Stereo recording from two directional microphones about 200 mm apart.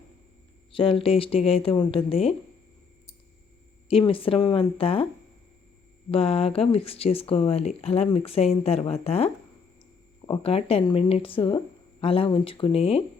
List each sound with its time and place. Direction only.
0.7 s speech: 25° left (ahead or behind)
3.8 s speech: 25° left (ahead or behind)
6.1 s speech: 30° left (ahead or behind)